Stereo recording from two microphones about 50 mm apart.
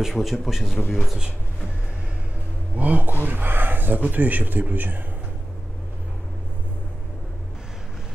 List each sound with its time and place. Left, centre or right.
0.0 s a man's voice: centre
2.8 s speech: right